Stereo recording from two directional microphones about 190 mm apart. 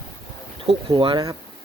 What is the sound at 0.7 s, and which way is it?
Speech, 25° right (ahead or behind).